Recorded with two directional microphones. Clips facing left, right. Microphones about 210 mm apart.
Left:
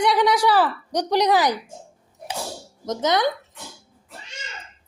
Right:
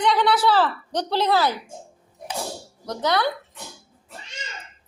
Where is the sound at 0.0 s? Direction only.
10° left (ahead or behind).